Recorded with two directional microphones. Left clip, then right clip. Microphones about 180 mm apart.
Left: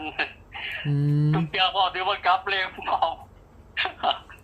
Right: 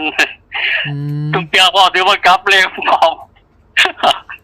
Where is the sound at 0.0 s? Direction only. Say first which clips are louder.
Right 15 dB; 70° right (ahead or behind).